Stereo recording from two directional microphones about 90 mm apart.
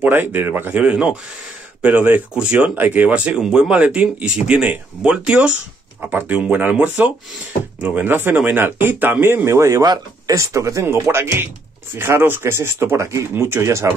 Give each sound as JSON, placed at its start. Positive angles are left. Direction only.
{"t": 0.0, "sound": "speech", "side_deg": -20}